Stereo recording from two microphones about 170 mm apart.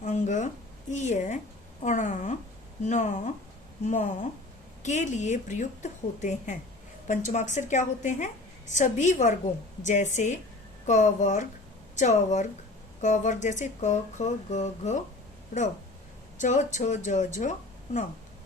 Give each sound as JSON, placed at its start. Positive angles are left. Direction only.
{"t": 0.0, "sound": "a sound", "side_deg": 45}
{"t": 0.9, "sound": "a woman's voice", "side_deg": 45}
{"t": 16.4, "sound": "a woman's voice", "side_deg": 45}